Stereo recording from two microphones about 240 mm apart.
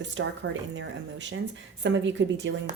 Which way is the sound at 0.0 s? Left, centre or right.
Right.